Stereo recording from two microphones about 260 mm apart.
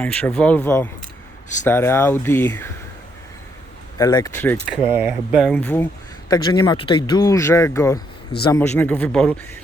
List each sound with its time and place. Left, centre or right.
0.0 s a man's voice: centre
3.9 s speech: centre
4.9 s a man's voice: centre